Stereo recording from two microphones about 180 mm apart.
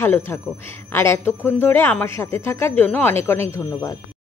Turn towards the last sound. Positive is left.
turn(degrees=15)  # may be behind; listen again after turning